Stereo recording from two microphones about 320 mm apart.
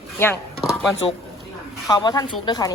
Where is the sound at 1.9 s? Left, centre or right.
Centre.